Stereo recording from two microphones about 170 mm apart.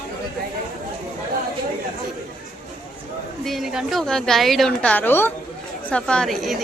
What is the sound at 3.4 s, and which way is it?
A woman's voice, centre (ahead or behind).